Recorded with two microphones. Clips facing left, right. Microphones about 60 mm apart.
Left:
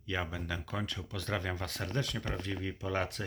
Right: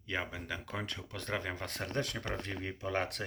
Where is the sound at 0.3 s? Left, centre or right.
Centre; by 2.7 s right.